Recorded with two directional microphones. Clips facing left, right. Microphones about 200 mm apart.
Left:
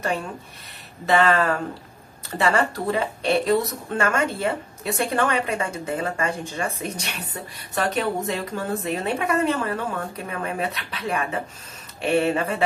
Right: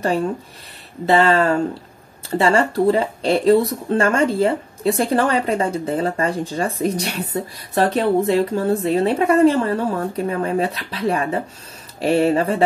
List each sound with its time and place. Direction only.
1.0 s speech: 30° right (ahead or behind)